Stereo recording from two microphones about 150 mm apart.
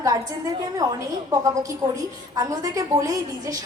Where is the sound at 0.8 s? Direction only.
20° right (ahead or behind).